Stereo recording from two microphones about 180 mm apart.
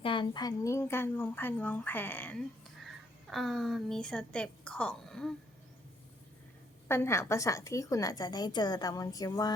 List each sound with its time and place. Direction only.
0.0 s a woman's voice: 25° left (ahead or behind); by 5.3 s 5° left (ahead or behind)
6.8 s a woman's voice: 15° left (ahead or behind)